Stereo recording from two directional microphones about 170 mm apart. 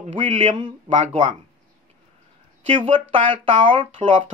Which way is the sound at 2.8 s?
30° right (ahead or behind).